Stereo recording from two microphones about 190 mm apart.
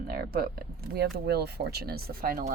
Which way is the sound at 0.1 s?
55° right (ahead or behind).